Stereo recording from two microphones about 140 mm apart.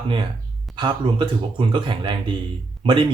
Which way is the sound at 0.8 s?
35° right (ahead or behind).